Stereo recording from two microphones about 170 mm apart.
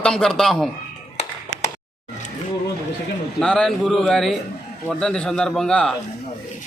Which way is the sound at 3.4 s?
5° left (ahead or behind).